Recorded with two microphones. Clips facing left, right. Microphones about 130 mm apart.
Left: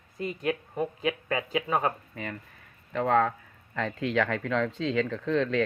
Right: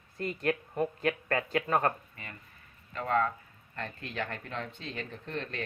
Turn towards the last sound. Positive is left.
turn(degrees=90)